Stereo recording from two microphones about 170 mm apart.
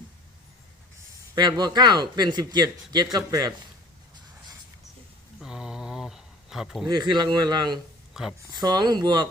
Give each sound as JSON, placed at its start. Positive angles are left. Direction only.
{"t": 1.4, "sound": "a man's voice", "side_deg": -25}
{"t": 5.4, "sound": "a sound", "side_deg": -5}
{"t": 6.8, "sound": "a man's voice", "side_deg": -25}
{"t": 8.1, "sound": "speech", "side_deg": 0}
{"t": 8.5, "sound": "a man's voice", "side_deg": -25}